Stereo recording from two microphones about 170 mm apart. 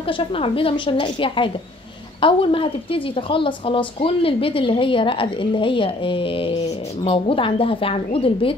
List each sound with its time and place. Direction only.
0.0 s a woman's voice: 30° left (ahead or behind)